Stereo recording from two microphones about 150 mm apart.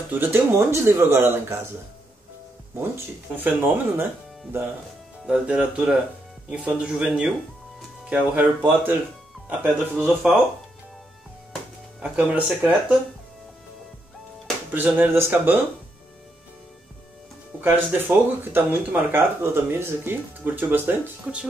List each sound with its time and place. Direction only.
0.2 s speech: 15° right (ahead or behind)
3.3 s speech: 10° right (ahead or behind)
12.0 s speech: 10° right (ahead or behind)
14.7 s speech: 10° right (ahead or behind)
17.6 s speech: 15° right (ahead or behind)